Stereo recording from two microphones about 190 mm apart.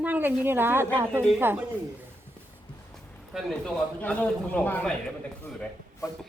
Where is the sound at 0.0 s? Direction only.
10° right (ahead or behind).